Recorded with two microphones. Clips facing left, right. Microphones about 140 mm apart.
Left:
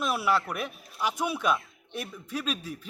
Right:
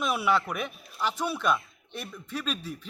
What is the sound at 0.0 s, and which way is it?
A man's voice, 5° left (ahead or behind).